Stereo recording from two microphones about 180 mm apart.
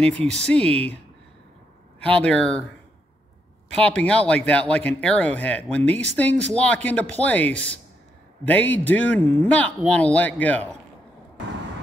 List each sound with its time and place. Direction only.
0.3 s speech: 5° left (ahead or behind)
2.0 s speech: 5° left (ahead or behind)
3.7 s speech: 5° left (ahead or behind)